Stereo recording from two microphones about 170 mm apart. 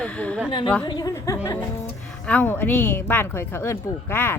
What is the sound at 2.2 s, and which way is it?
A woman's voice, 10° left (ahead or behind).